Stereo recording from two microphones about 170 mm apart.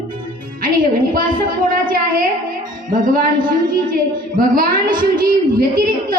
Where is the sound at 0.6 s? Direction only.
55° right (ahead or behind).